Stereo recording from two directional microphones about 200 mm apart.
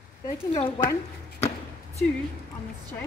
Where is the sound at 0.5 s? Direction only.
25° left (ahead or behind).